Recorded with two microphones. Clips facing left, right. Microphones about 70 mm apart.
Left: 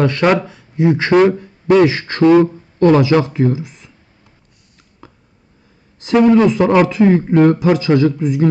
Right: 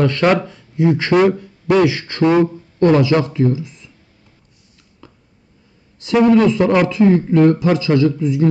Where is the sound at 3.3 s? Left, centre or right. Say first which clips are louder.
Left 1 dB; left.